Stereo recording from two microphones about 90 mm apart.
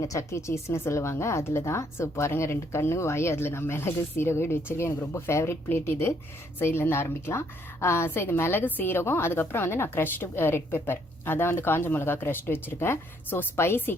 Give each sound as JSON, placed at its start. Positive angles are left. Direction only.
{"t": 0.0, "sound": "a woman's voice", "side_deg": 35}